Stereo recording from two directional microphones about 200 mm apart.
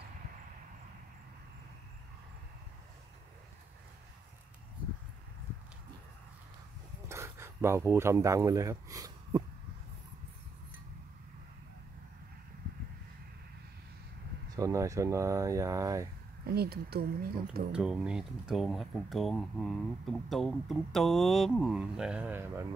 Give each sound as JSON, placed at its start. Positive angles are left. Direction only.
{"t": 7.1, "sound": "speech", "side_deg": -15}
{"t": 14.5, "sound": "speech", "side_deg": -15}
{"t": 16.4, "sound": "speech", "side_deg": -50}
{"t": 17.7, "sound": "speech", "side_deg": -5}